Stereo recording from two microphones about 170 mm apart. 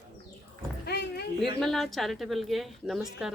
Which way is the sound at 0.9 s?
70° left (ahead or behind).